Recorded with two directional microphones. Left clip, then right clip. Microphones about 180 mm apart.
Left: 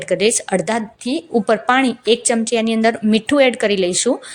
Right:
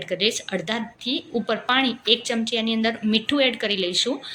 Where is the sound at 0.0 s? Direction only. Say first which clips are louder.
Left 7 dB; 45° left (ahead or behind).